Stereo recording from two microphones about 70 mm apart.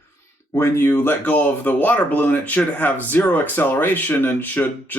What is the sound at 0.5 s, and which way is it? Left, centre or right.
Speech, left.